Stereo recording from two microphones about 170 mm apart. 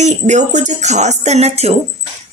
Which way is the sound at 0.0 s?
45° right (ahead or behind).